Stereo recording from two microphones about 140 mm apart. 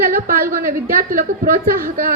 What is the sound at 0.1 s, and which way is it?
A woman's voice, 90° right.